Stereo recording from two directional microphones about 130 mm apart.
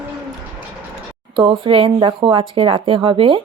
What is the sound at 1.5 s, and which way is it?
A woman's voice, 45° right (ahead or behind).